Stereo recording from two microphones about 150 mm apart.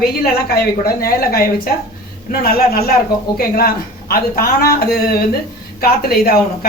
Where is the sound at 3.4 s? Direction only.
80° left.